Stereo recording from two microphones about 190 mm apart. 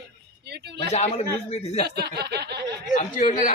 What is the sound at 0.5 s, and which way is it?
Speech, 60° right (ahead or behind).